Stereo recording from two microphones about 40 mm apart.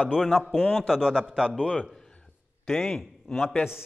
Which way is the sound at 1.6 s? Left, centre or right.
Right.